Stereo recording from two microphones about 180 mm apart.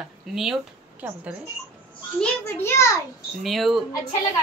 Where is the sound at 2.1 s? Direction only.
10° left (ahead or behind).